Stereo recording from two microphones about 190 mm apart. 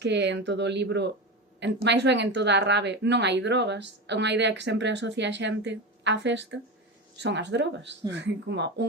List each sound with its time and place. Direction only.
0.0 s speech: 65° right (ahead or behind)